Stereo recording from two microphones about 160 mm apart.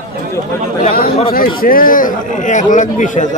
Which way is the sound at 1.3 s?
65° left (ahead or behind).